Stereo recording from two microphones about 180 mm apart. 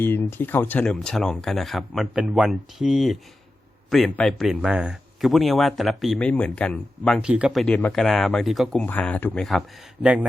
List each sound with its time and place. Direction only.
0.0 s speech: 10° left (ahead or behind)
7.2 s speech: 5° right (ahead or behind)